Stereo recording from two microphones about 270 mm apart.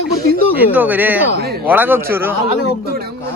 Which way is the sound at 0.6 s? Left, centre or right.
Centre.